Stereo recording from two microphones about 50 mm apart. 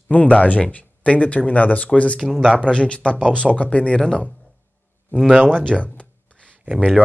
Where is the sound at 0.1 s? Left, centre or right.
Left.